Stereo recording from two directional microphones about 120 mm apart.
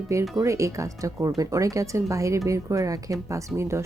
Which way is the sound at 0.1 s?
25° right (ahead or behind).